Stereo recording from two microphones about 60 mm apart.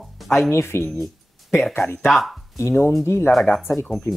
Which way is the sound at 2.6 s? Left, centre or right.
Left.